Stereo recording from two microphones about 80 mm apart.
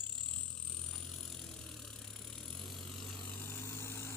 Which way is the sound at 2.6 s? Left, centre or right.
Centre.